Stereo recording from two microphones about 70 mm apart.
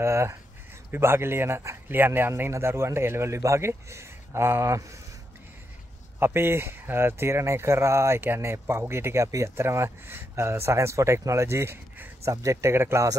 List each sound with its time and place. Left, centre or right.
0.0 s speech: right
6.1 s speech: right
12.3 s speech: right